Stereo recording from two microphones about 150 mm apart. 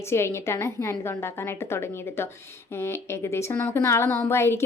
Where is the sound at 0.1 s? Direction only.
15° left (ahead or behind).